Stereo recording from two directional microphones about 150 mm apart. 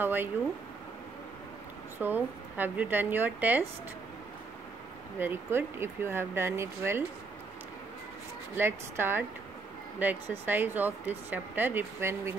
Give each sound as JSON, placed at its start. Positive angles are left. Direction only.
{"t": 0.0, "sound": "speech", "side_deg": -15}
{"t": 2.0, "sound": "speech", "side_deg": -15}
{"t": 5.2, "sound": "speech", "side_deg": -15}
{"t": 8.5, "sound": "speech", "side_deg": -15}